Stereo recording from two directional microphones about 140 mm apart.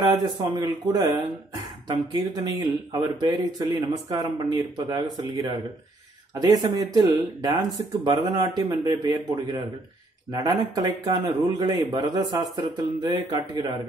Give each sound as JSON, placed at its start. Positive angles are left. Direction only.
{"t": 0.2, "sound": "speech", "side_deg": -30}